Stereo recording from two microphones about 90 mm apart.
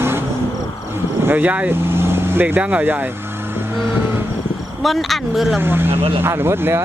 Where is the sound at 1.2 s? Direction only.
20° right (ahead or behind).